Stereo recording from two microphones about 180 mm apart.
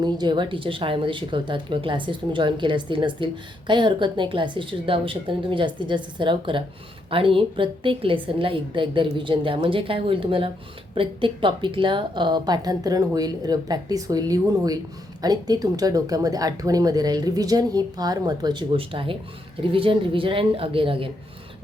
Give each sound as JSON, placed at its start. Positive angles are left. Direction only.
{"t": 0.0, "sound": "speech", "side_deg": -25}